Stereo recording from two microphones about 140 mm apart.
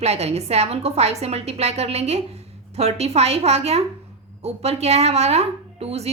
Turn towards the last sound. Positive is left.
turn(degrees=-45)  # may be behind; listen again after turning